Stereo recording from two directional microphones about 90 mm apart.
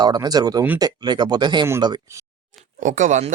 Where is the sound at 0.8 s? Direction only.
55° right (ahead or behind).